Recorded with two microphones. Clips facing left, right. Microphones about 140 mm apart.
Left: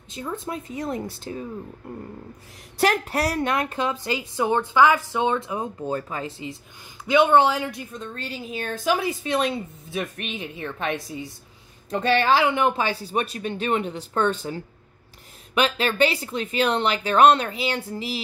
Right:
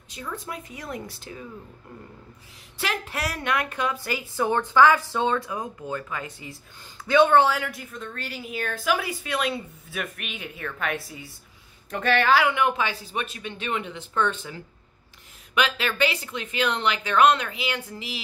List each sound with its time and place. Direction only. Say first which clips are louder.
0.1 s a woman's voice: left 4 dB; 25° left (ahead or behind)
2.8 s a woman's voice: left 8 dB; 40° left (ahead or behind)
7.1 s a woman's voice: left 1 dB; 15° left (ahead or behind); by 18.2 s 35° left (ahead or behind)